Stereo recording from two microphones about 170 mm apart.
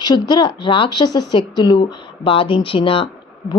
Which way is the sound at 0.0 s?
25° left (ahead or behind).